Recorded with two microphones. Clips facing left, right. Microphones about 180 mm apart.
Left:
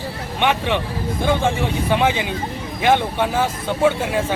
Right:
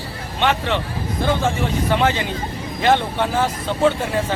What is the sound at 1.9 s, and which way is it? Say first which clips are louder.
Speech: left 1 dB; 15° left (ahead or behind).